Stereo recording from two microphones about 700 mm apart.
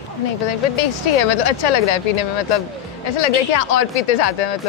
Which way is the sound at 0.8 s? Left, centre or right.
Left.